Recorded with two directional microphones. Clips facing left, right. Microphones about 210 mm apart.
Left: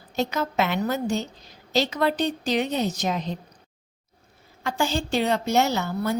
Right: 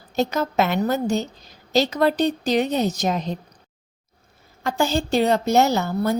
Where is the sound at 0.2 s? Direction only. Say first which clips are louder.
Right 4 dB; 40° right (ahead or behind).